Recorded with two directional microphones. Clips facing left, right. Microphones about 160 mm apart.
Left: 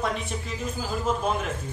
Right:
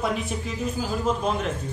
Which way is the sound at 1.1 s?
5° left (ahead or behind).